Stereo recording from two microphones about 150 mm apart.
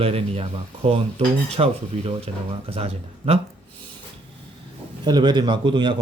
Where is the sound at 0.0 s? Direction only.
45° right (ahead or behind).